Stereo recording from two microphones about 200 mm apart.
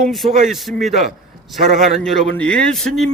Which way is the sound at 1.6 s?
40° right (ahead or behind).